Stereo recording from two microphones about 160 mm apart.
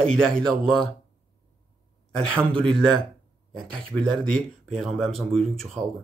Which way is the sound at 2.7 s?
5° left (ahead or behind).